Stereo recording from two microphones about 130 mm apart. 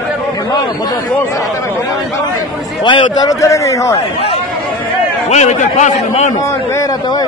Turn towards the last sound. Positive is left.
turn(degrees=65)  # may be behind; listen again after turning